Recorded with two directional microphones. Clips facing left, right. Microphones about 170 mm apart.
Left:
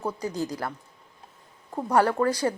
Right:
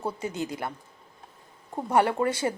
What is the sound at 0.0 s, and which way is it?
Speech, 25° right (ahead or behind).